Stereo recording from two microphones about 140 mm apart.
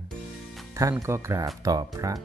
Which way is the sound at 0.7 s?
20° right (ahead or behind).